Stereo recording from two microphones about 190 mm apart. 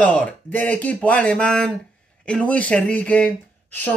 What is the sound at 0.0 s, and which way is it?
Speech, 5° left (ahead or behind).